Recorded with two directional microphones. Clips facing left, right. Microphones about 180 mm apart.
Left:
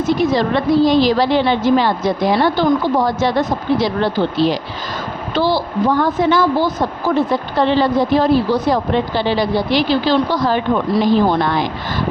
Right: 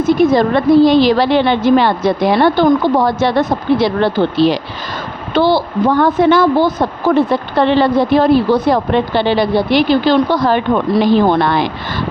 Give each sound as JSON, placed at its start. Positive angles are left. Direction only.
{"t": 0.0, "sound": "a woman's voice", "side_deg": -55}